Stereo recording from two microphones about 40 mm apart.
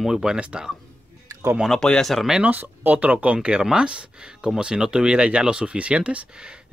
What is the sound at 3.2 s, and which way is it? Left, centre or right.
Speech, right.